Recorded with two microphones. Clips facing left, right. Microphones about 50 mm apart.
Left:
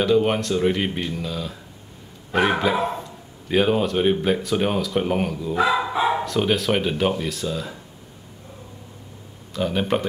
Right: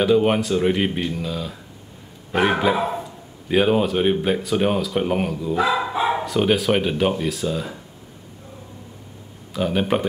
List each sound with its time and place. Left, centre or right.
0.0 s speech: centre
9.5 s speech: centre